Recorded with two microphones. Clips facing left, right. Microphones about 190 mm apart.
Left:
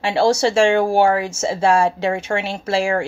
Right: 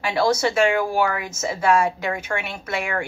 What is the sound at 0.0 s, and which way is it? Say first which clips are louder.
Speech: left 4 dB; 25° left (ahead or behind).